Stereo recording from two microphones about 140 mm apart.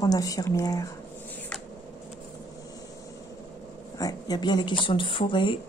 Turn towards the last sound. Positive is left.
turn(degrees=35)  # may be behind; listen again after turning